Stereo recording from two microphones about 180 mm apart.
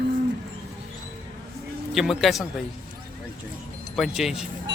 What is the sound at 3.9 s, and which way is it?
Speech, centre (ahead or behind).